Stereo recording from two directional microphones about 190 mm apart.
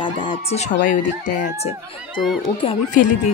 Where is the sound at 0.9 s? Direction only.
45° left (ahead or behind).